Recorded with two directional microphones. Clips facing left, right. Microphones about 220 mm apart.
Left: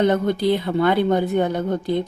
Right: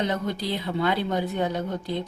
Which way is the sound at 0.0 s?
55° left (ahead or behind).